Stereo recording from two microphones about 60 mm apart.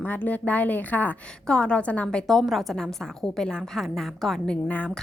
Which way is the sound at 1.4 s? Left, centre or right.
Centre.